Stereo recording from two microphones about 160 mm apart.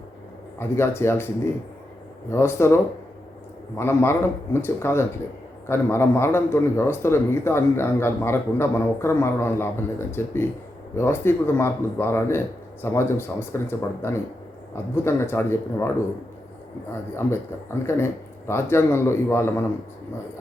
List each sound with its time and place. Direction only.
0.8 s a man's voice: 15° left (ahead or behind)
2.3 s a man's voice: 15° left (ahead or behind)
17.2 s a man's voice: 15° left (ahead or behind)